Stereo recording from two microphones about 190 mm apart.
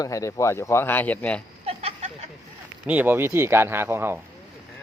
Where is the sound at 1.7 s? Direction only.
35° right (ahead or behind).